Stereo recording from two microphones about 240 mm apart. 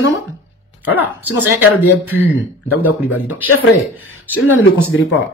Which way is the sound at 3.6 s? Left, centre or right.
Left.